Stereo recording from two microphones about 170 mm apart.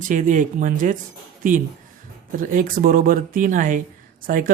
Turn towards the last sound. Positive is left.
turn(degrees=-55)  # may be behind; listen again after turning